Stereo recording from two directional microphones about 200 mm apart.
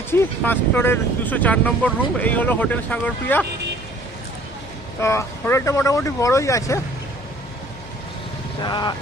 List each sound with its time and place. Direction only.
0.1 s speech: 10° left (ahead or behind)
4.9 s speech: 15° left (ahead or behind)
8.6 s speech: 20° left (ahead or behind)